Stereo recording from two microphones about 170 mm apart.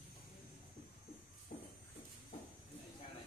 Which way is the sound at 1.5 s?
50° left (ahead or behind).